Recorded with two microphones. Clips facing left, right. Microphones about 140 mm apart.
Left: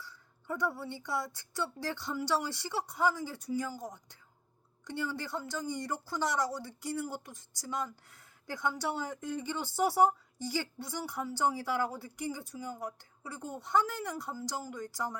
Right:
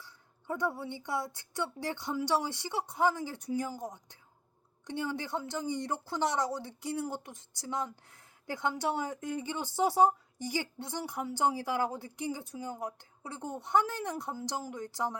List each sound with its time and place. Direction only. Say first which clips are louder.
0.0 s speech: left 1 dB; 20° right (ahead or behind)